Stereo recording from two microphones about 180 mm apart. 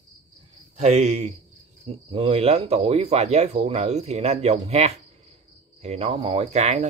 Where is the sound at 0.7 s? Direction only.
35° right (ahead or behind).